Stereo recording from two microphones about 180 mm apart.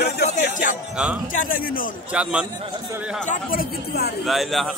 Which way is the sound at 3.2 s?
50° left (ahead or behind).